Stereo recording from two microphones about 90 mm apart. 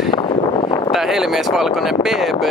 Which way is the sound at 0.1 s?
65° left (ahead or behind).